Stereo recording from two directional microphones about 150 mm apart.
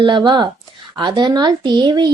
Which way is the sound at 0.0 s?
30° right (ahead or behind).